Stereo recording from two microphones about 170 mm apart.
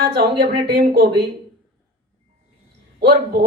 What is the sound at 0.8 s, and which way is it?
Speech, 65° right (ahead or behind).